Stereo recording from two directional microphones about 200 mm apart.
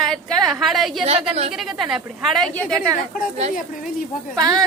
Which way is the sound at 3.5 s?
40° left (ahead or behind).